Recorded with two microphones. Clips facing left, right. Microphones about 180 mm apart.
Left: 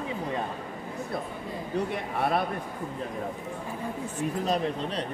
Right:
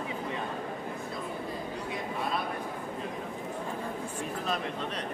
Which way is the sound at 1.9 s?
65° left (ahead or behind).